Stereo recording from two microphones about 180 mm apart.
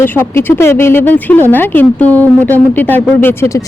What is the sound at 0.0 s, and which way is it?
A woman's voice, 15° left (ahead or behind).